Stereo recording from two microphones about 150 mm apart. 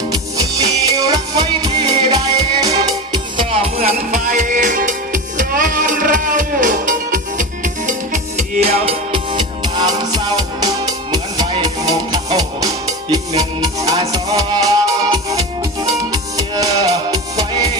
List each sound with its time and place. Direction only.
0.3 s music: 25° right (ahead or behind)
3.3 s music: 40° right (ahead or behind)